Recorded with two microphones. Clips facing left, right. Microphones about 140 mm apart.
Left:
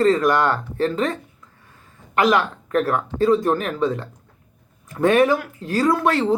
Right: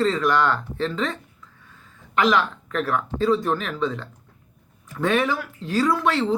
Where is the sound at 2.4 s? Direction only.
45° left (ahead or behind).